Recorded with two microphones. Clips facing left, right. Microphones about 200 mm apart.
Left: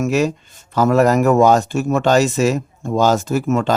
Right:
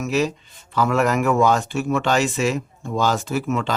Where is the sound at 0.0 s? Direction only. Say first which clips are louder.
Left 4 dB; 45° left (ahead or behind).